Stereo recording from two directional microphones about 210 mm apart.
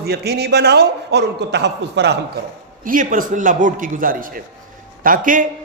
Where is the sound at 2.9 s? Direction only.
40° right (ahead or behind).